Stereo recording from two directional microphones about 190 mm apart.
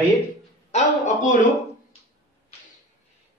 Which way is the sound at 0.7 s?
40° left (ahead or behind).